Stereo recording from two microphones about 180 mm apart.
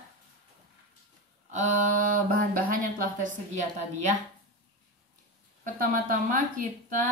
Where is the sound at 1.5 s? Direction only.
45° right (ahead or behind).